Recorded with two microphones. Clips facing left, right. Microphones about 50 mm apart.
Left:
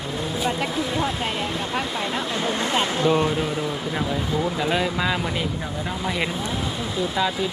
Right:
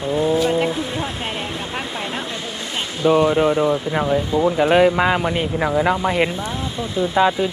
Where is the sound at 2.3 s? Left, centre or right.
Centre.